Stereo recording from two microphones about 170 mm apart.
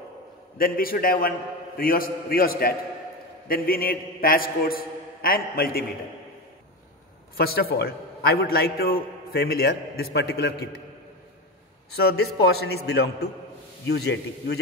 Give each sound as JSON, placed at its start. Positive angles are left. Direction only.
{"t": 0.6, "sound": "a man's voice", "side_deg": 60}
{"t": 7.3, "sound": "a man's voice", "side_deg": 65}
{"t": 11.9, "sound": "a man's voice", "side_deg": 70}